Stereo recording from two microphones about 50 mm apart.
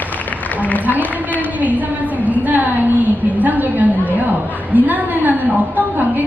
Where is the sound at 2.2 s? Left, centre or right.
Right.